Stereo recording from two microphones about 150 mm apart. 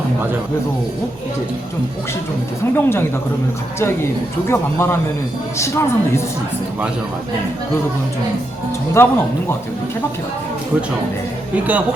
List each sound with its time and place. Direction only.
2.7 s speech: 15° left (ahead or behind)
4.4 s speech: 15° left (ahead or behind)
9.0 s speech: 15° left (ahead or behind)
11.5 s speech: 10° right (ahead or behind)